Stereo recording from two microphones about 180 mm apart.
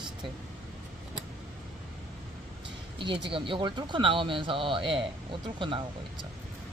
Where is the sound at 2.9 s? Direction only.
25° right (ahead or behind).